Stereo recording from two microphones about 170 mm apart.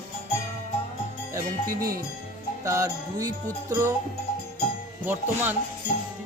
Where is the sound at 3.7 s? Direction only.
15° right (ahead or behind).